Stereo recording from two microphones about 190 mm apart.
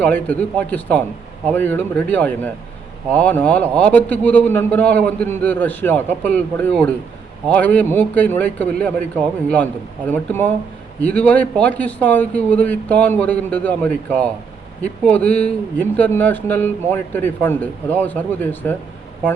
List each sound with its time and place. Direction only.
0.0 s a man's voice: 10° left (ahead or behind)
10.1 s a man's voice: 10° left (ahead or behind)